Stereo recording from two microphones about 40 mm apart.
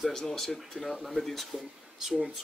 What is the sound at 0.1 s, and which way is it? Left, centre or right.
Speech, centre.